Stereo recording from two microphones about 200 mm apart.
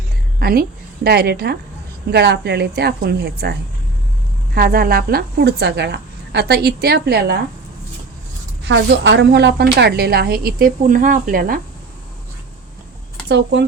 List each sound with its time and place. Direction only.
0.3 s a woman's voice: 50° right (ahead or behind)
4.5 s a woman's voice: 50° right (ahead or behind)
8.6 s a woman's voice: 60° right (ahead or behind)
13.2 s speech: 60° right (ahead or behind)